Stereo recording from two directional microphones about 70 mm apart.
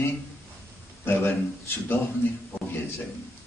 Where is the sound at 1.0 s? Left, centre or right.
Left.